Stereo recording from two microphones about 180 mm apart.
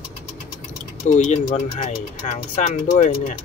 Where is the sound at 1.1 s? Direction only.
40° left (ahead or behind).